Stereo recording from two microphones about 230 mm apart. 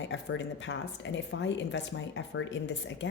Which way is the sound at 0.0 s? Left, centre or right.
Left.